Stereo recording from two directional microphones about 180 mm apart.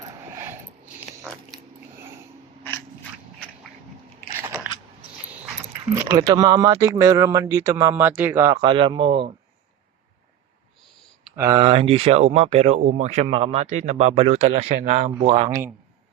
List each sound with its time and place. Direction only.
0.0 s a sound: 20° right (ahead or behind)
4.4 s biting: 15° right (ahead or behind)
5.9 s speech: 15° right (ahead or behind)
8.6 s speech: 25° right (ahead or behind)
11.3 s speech: 20° right (ahead or behind)
11.6 s speech: 30° right (ahead or behind)
15.4 s speech: 15° right (ahead or behind)